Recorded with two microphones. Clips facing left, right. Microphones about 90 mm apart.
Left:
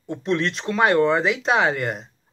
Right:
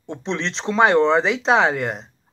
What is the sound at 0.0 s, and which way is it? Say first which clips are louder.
Speech: left 3 dB; 25° right (ahead or behind).